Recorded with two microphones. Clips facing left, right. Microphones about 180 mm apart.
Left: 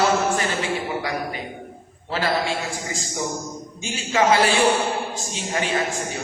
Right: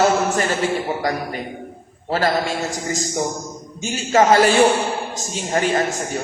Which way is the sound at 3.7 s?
45° right (ahead or behind).